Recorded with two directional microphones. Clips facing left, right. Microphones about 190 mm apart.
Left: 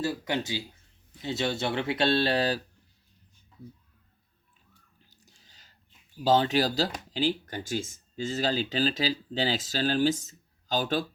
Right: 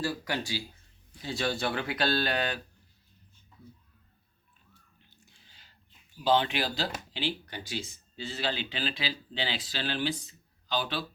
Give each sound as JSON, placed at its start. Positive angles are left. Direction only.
{"t": 0.0, "sound": "speech", "side_deg": 20}
{"t": 5.0, "sound": "a sound", "side_deg": 40}
{"t": 6.2, "sound": "speech", "side_deg": 40}